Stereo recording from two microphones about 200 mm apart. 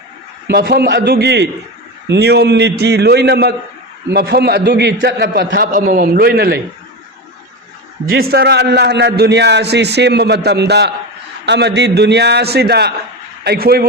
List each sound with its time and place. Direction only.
0.4 s a man's voice: 55° right (ahead or behind)
8.0 s a man's voice: 50° right (ahead or behind)